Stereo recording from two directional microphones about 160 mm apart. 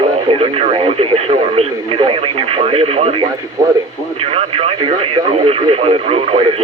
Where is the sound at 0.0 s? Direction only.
40° right (ahead or behind).